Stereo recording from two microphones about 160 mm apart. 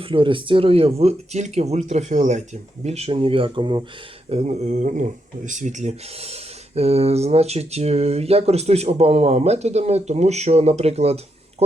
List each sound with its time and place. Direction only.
0.0 s speech: 30° right (ahead or behind)
4.3 s speech: 40° right (ahead or behind)